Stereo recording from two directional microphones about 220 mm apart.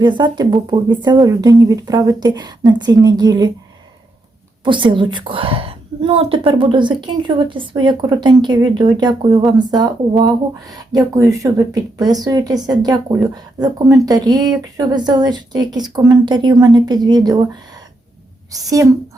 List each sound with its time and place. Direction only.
0.0 s speech: 20° right (ahead or behind)
4.6 s a woman's voice: 20° right (ahead or behind)